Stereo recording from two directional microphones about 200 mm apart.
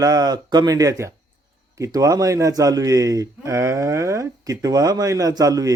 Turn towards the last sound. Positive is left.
turn(degrees=-15)  # may be behind; listen again after turning